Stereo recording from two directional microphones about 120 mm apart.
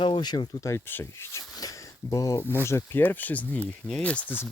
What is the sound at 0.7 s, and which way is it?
Speech, 20° left (ahead or behind).